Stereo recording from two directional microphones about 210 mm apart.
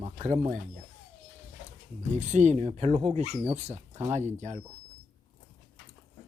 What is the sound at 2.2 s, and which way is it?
Speech, 35° right (ahead or behind).